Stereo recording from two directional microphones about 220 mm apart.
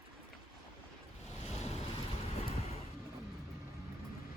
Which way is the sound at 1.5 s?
30° left (ahead or behind).